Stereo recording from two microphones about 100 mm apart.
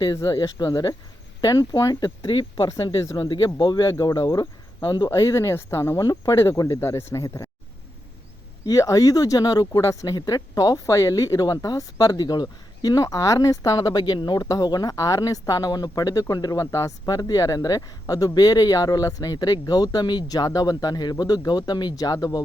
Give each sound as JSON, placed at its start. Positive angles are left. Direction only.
{"t": 0.3, "sound": "speech", "side_deg": 50}
{"t": 1.4, "sound": "speech", "side_deg": 35}
{"t": 3.8, "sound": "speech", "side_deg": 30}
{"t": 4.1, "sound": "speech", "side_deg": 45}
{"t": 5.1, "sound": "speech", "side_deg": 30}
{"t": 8.6, "sound": "speech", "side_deg": 35}